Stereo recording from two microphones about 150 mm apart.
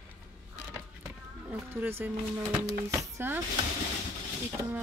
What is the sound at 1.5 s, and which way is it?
Speech, 15° right (ahead or behind).